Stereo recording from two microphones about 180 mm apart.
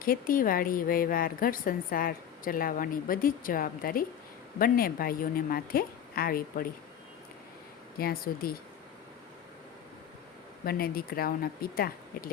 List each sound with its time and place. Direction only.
0.0 s a woman's voice: 50° left (ahead or behind)
7.9 s speech: 55° left (ahead or behind)
10.7 s speech: 55° left (ahead or behind)